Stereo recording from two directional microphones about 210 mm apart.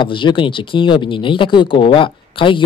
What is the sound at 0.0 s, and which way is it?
Speech, 20° left (ahead or behind).